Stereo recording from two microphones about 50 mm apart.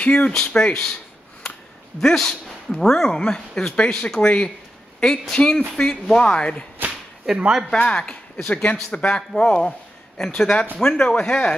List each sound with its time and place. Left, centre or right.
0.0 s speech: left
2.0 s speech: centre
7.3 s speech: centre
7.7 s speech: centre